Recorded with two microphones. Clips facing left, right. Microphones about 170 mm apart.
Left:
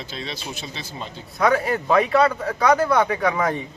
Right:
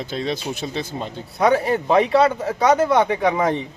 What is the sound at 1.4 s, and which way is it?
A man's voice, 25° right (ahead or behind).